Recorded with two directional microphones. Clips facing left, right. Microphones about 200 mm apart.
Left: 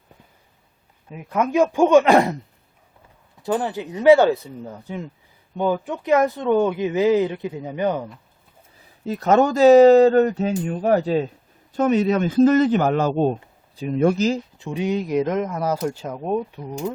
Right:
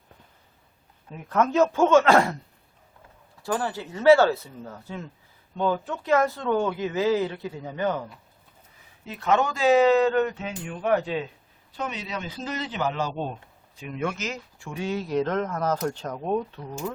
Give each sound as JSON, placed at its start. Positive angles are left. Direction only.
{"t": 1.1, "sound": "speech", "side_deg": 10}
{"t": 3.4, "sound": "speech", "side_deg": 20}
{"t": 9.0, "sound": "speech", "side_deg": 40}
{"t": 11.7, "sound": "a man's voice", "side_deg": 50}
{"t": 13.3, "sound": "speech", "side_deg": 35}
{"t": 14.6, "sound": "speech", "side_deg": 20}